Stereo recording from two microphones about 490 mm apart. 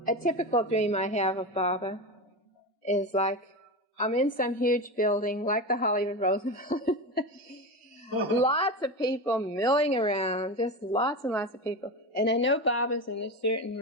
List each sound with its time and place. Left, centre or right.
0.0 s a woman's voice: centre
8.4 s a woman's voice: centre
12.1 s speech: left